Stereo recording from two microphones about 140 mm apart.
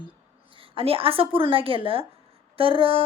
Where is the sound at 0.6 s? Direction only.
40° right (ahead or behind).